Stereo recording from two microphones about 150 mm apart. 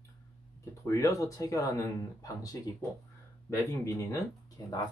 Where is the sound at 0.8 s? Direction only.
20° left (ahead or behind).